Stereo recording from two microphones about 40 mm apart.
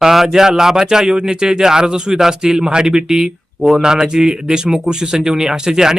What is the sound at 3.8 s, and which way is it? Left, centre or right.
Speech, centre.